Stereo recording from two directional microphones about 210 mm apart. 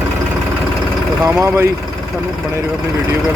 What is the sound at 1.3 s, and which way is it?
Speech, 10° right (ahead or behind).